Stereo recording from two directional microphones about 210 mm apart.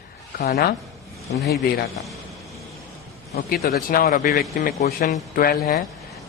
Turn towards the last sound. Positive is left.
turn(degrees=45)  # may be behind; listen again after turning